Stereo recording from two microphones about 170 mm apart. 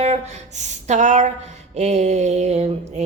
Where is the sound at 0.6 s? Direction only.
45° right (ahead or behind).